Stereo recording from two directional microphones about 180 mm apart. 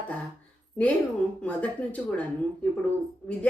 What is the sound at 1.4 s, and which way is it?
Speech, 10° left (ahead or behind).